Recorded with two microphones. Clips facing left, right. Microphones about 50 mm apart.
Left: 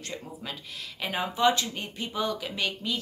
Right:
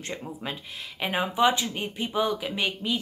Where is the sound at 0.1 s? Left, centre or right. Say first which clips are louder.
Right 4 dB; right.